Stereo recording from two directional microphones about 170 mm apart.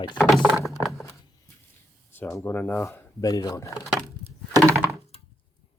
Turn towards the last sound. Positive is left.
turn(degrees=-15)  # may be behind; listen again after turning